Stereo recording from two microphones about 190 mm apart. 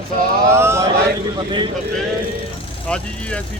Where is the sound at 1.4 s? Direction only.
25° right (ahead or behind).